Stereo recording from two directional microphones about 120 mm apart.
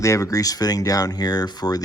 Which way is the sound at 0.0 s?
25° left (ahead or behind).